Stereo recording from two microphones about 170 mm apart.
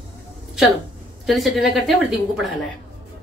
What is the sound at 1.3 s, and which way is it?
Speech, centre (ahead or behind).